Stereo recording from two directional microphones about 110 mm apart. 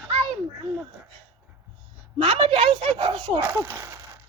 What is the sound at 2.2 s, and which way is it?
Speech, 50° right (ahead or behind).